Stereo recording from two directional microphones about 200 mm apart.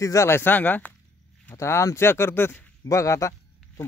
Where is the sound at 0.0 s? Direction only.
15° left (ahead or behind).